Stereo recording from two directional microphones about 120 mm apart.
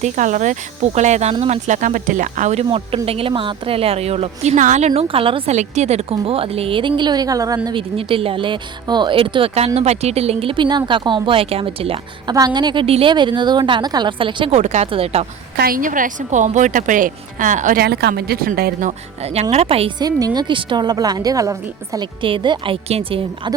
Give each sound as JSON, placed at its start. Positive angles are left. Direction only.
{"t": 0.0, "sound": "a woman's voice", "side_deg": -90}
{"t": 0.9, "sound": "speech", "side_deg": -75}
{"t": 2.6, "sound": "speech", "side_deg": -50}
{"t": 5.0, "sound": "speech", "side_deg": -50}
{"t": 5.5, "sound": "speech", "side_deg": -70}
{"t": 7.8, "sound": "speech", "side_deg": -50}
{"t": 12.3, "sound": "a woman's voice", "side_deg": -35}
{"t": 12.8, "sound": "a woman's voice", "side_deg": -50}
{"t": 14.5, "sound": "speech", "side_deg": -70}
{"t": 14.8, "sound": "speech", "side_deg": -55}
{"t": 15.8, "sound": "a woman's voice", "side_deg": -90}
{"t": 18.8, "sound": "speech", "side_deg": -70}
{"t": 20.0, "sound": "a woman's voice", "side_deg": -30}
{"t": 22.2, "sound": "speech", "side_deg": -45}